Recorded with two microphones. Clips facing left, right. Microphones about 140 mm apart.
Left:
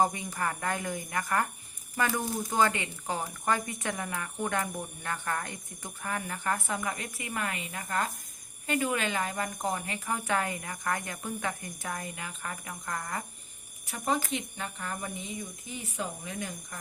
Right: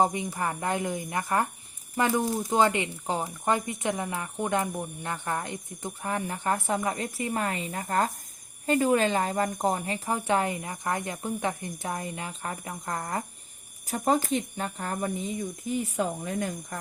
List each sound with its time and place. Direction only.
0.0 s speech: 20° right (ahead or behind); by 16.7 s 45° right (ahead or behind)